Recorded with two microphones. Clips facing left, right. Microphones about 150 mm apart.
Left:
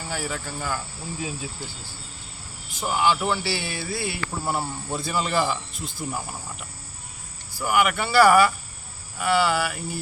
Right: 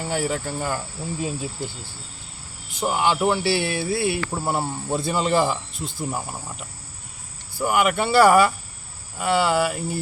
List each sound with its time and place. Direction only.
0.0 s speech: 20° right (ahead or behind)
1.2 s cricket: 55° right (ahead or behind)
2.8 s speech: 20° right (ahead or behind)
3.4 s cricket: 60° right (ahead or behind)
3.9 s speech: 25° right (ahead or behind)
7.6 s speech: 25° right (ahead or behind)